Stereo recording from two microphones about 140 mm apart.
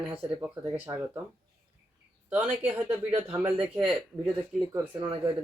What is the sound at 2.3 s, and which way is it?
Speech, 15° right (ahead or behind).